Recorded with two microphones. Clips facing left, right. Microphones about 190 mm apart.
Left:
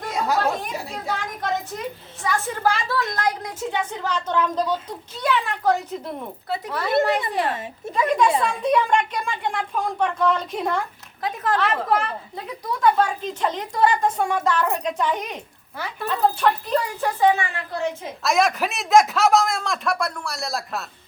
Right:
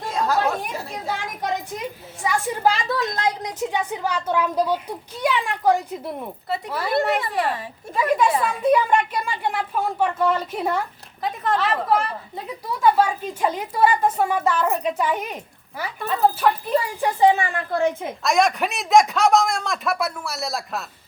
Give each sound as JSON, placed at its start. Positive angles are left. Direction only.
{"t": 0.1, "sound": "chatter", "side_deg": 10}
{"t": 1.4, "sound": "a woman's voice", "side_deg": -15}
{"t": 6.5, "sound": "a woman's voice", "side_deg": 0}
{"t": 17.2, "sound": "speech", "side_deg": -25}
{"t": 17.4, "sound": "a woman's voice", "side_deg": -50}
{"t": 18.2, "sound": "speech", "side_deg": 0}